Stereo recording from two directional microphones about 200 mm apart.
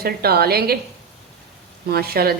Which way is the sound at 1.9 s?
50° right (ahead or behind).